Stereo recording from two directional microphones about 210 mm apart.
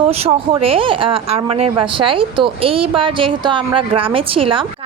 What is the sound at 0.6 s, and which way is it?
A woman's voice, 25° right (ahead or behind).